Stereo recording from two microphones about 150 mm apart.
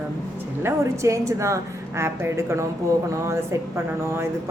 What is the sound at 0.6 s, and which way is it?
A woman's voice, 20° right (ahead or behind).